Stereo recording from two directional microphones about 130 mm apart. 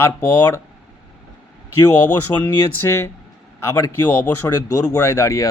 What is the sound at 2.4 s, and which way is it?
Speech, 20° left (ahead or behind).